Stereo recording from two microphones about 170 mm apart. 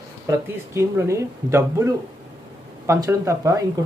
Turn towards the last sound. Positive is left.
turn(degrees=-15)  # may be behind; listen again after turning